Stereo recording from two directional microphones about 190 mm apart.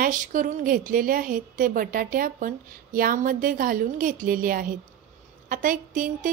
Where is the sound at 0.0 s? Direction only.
45° right (ahead or behind).